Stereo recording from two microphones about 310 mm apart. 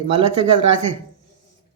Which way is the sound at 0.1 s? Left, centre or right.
Centre.